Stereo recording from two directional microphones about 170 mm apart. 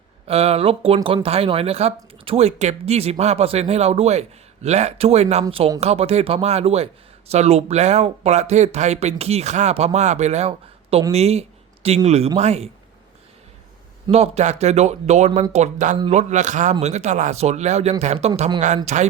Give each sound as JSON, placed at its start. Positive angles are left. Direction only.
{"t": 0.3, "sound": "speech", "side_deg": -35}
{"t": 14.1, "sound": "speech", "side_deg": -40}